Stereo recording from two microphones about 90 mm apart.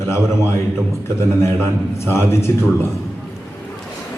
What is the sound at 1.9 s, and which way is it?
Speech, 30° left (ahead or behind).